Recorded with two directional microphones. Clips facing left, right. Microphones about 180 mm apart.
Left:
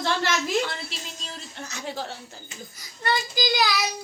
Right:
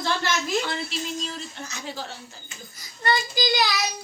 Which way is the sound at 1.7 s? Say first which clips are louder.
Left 6 dB; 65° left (ahead or behind).